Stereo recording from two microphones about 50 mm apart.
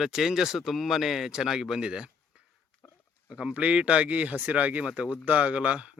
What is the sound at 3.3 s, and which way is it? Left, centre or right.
Speech, centre.